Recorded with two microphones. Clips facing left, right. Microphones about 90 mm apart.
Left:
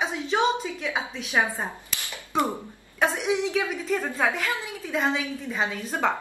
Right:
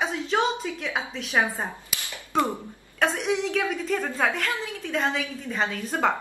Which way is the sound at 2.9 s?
5° left (ahead or behind).